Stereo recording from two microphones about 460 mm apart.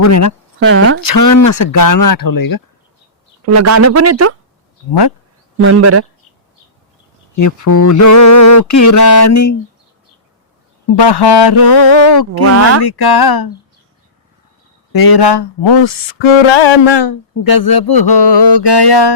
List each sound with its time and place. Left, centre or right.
0.0 s a sound: left
0.6 s speech: right
1.0 s speech: left
3.4 s speech: right
5.5 s speech: right
7.3 s a sound: left
10.8 s music: left
11.6 s speech: left
14.9 s music: left